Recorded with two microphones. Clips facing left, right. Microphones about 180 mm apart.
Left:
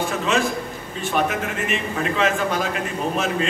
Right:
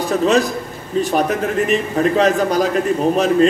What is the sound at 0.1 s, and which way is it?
A man's voice, 40° right (ahead or behind).